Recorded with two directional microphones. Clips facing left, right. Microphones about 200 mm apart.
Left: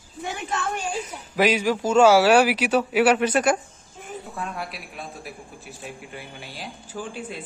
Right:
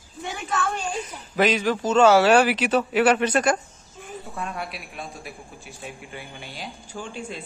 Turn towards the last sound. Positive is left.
turn(degrees=5)  # may be behind; listen again after turning